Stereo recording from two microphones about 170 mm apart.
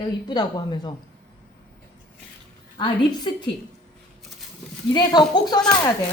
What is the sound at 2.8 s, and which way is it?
Speech, 25° left (ahead or behind).